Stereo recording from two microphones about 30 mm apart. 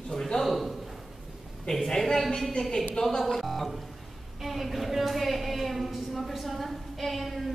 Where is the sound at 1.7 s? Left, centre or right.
Centre.